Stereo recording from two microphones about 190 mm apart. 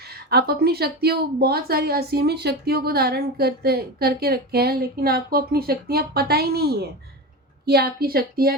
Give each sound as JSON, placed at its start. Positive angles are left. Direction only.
{"t": 0.3, "sound": "a woman's voice", "side_deg": -60}